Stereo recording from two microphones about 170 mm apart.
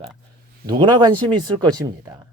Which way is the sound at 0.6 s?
25° right (ahead or behind).